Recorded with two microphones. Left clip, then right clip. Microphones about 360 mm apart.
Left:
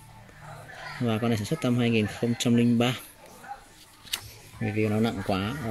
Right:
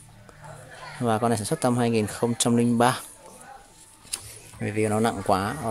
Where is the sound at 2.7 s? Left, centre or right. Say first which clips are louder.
Right 6 dB; centre.